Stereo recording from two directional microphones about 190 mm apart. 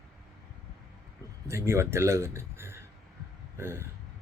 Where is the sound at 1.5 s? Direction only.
15° right (ahead or behind).